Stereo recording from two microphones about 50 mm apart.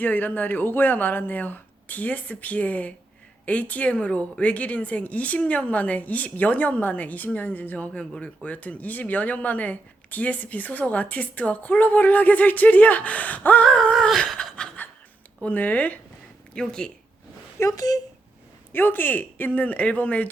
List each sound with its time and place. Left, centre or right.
0.0 s speech: left
7.9 s speech: left
8.4 s speech: left
14.4 s chuckle: left
14.8 s a sound: left
15.4 s speech: left
16.6 s speech: centre
17.6 s speech: left
18.7 s speech: left